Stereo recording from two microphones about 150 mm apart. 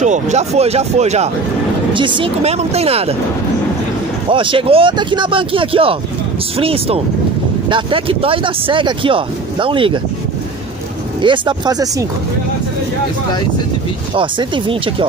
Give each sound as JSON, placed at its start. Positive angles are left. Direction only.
{"t": 0.0, "sound": "speech", "side_deg": -50}
{"t": 2.0, "sound": "speech", "side_deg": -35}
{"t": 4.3, "sound": "speech", "side_deg": -35}
{"t": 11.1, "sound": "speech", "side_deg": -35}
{"t": 14.1, "sound": "speech", "side_deg": -35}